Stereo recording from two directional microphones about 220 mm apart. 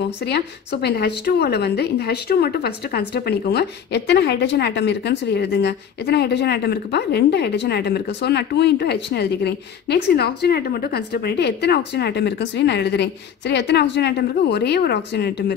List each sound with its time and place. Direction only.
0.0 s speech: 50° left (ahead or behind)